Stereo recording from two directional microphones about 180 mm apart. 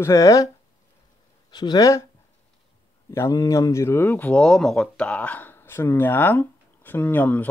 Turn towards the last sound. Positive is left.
turn(degrees=10)  # may be behind; listen again after turning